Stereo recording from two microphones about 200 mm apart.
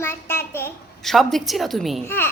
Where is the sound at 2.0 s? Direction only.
10° left (ahead or behind).